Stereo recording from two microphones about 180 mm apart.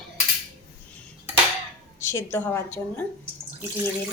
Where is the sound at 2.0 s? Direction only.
15° left (ahead or behind).